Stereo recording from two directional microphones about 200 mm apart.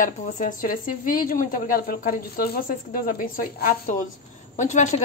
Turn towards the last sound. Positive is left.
turn(degrees=35)  # may be behind; listen again after turning